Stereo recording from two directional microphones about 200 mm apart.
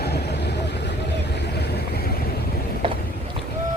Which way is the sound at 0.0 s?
55° left (ahead or behind).